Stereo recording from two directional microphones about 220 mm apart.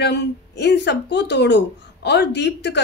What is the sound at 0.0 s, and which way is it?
Speech, 50° left (ahead or behind).